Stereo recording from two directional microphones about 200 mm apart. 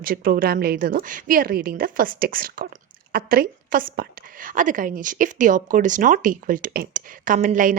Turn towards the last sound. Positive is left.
turn(degrees=-40)  # may be behind; listen again after turning